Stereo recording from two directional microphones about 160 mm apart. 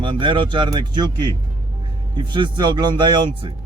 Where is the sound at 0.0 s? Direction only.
30° right (ahead or behind).